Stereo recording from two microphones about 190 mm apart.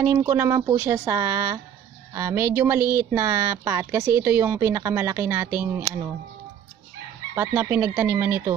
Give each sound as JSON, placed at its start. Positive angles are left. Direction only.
{"t": 0.0, "sound": "speech", "side_deg": -15}
{"t": 7.3, "sound": "speech", "side_deg": -15}